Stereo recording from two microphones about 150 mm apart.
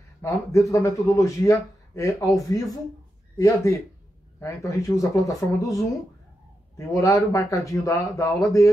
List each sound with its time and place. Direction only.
0.2 s speech: 20° left (ahead or behind)
6.9 s speech: 20° left (ahead or behind)